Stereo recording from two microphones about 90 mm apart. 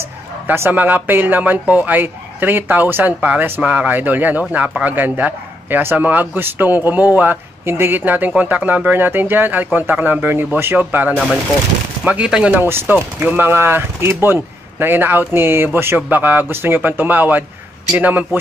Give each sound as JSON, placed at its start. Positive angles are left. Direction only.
{"t": 0.0, "sound": "speech", "side_deg": -25}
{"t": 12.5, "sound": "speech", "side_deg": -25}